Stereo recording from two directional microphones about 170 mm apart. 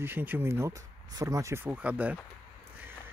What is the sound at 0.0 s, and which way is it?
Speech, 10° right (ahead or behind).